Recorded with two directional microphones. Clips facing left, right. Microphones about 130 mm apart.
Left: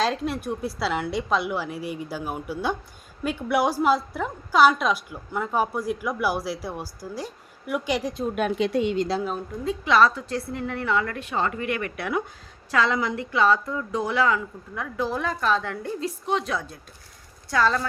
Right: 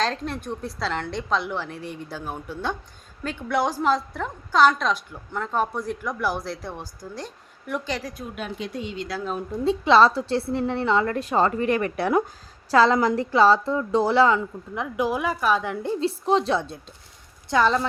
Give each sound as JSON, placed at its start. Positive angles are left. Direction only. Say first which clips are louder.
{"t": 0.0, "sound": "a woman's voice", "louder": "left 2 dB", "side_deg": 5}
{"t": 8.4, "sound": "speech", "louder": "left 9 dB", "side_deg": 70}
{"t": 9.6, "sound": "a woman's voice", "louder": "right 3 dB", "side_deg": -30}
{"t": 14.9, "sound": "a woman's voice", "louder": "right 2 dB", "side_deg": -10}